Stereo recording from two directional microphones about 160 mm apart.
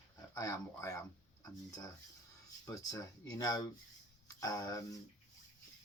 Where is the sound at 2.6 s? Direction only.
20° left (ahead or behind).